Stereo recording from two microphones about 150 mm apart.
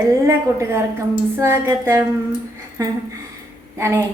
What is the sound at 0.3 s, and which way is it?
A woman's voice, 20° right (ahead or behind).